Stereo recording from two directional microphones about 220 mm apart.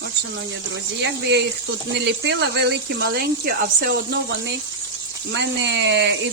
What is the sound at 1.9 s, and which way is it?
Speech, 50° right (ahead or behind).